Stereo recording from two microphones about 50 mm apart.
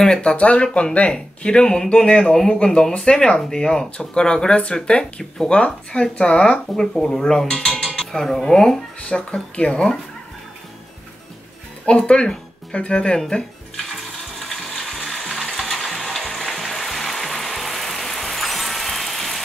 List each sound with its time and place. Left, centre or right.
0.0 s speech: centre
9.0 s speech: left
11.8 s speech: left
13.2 s speech: centre
14.4 s ratchet: centre